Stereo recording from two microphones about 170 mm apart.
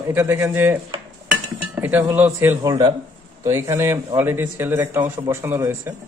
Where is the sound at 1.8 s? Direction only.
10° right (ahead or behind).